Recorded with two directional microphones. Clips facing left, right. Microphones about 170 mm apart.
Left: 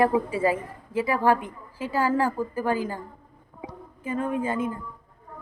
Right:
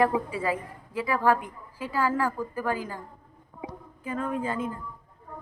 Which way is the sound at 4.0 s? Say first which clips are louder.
Left 3 dB; 25° left (ahead or behind).